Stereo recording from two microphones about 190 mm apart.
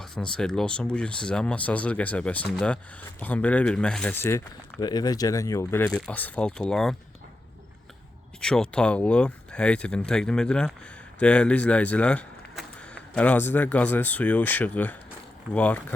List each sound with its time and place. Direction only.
0.0 s speech: 5° left (ahead or behind)
8.4 s speech: 5° left (ahead or behind)